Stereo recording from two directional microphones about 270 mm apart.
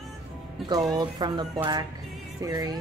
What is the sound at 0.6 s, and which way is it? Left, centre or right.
Speech, centre.